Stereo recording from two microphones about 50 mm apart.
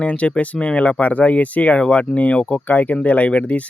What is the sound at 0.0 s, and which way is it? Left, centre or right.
Speech, left.